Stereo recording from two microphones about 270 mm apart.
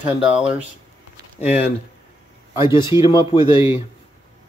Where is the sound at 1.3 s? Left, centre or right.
Left.